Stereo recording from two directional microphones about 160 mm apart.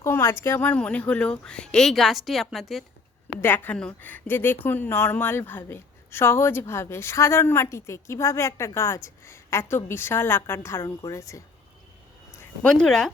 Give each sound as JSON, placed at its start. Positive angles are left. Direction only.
{"t": 0.0, "sound": "speech", "side_deg": 15}
{"t": 3.4, "sound": "a woman's voice", "side_deg": 10}
{"t": 12.6, "sound": "speech", "side_deg": 5}